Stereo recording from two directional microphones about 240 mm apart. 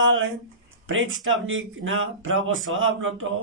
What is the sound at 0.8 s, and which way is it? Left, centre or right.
Speech, right.